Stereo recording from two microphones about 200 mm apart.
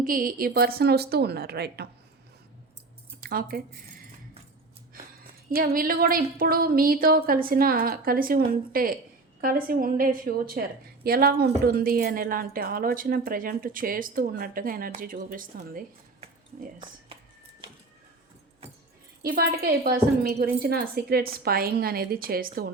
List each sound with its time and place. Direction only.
0.0 s a woman's voice: 45° right (ahead or behind)
3.2 s speech: 50° right (ahead or behind)
5.5 s a woman's voice: 45° right (ahead or behind)
19.2 s a woman's voice: 50° right (ahead or behind)